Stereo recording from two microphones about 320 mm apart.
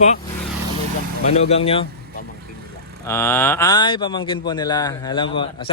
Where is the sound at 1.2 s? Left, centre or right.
Centre.